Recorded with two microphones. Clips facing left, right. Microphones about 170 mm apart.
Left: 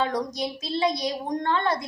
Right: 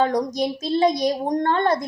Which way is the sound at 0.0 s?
45° right (ahead or behind).